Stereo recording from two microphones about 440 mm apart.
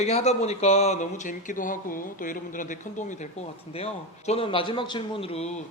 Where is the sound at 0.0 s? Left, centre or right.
Centre.